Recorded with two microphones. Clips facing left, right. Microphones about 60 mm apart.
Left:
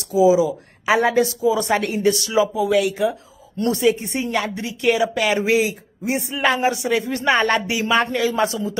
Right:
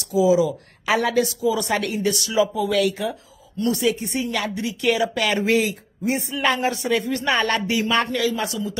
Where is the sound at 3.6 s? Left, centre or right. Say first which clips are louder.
Left 3 dB; left.